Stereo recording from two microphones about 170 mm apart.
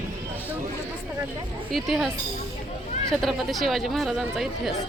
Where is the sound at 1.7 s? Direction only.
Centre (ahead or behind).